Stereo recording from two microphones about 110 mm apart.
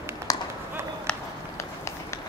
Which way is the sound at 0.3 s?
35° left (ahead or behind).